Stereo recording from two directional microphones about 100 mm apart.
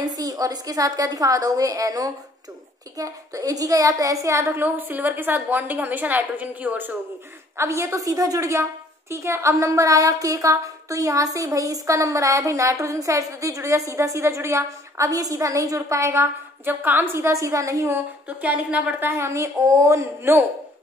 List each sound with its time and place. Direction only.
0.0 s a woman's voice: 40° right (ahead or behind); by 7.0 s 15° right (ahead or behind)
7.5 s a woman's voice: 30° right (ahead or behind)
17.9 s a woman's voice: 15° right (ahead or behind)